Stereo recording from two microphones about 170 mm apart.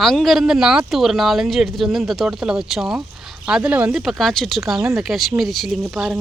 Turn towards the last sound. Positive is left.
turn(degrees=0)  # may be behind; listen again after turning